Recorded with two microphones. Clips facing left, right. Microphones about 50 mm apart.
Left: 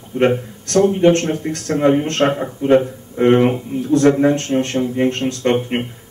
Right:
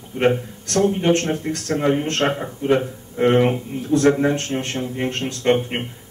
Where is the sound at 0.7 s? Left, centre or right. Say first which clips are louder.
Left 5 dB; centre.